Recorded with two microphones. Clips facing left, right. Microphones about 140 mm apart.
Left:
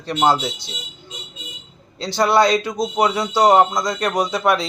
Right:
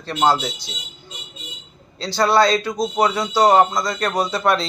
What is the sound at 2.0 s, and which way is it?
A man's voice, 20° left (ahead or behind).